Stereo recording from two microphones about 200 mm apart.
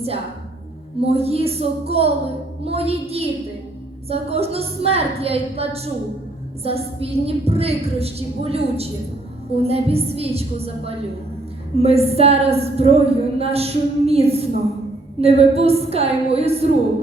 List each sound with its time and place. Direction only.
1.0 s a woman's voice: 30° right (ahead or behind)